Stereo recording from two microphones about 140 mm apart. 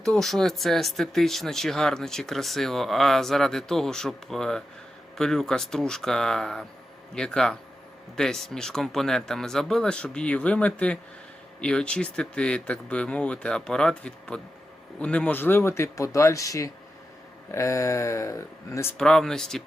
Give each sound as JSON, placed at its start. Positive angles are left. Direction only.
{"t": 0.0, "sound": "speech", "side_deg": 5}
{"t": 18.9, "sound": "speech", "side_deg": 5}